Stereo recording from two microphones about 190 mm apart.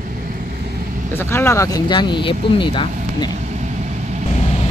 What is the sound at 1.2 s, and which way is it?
Speech, 15° left (ahead or behind).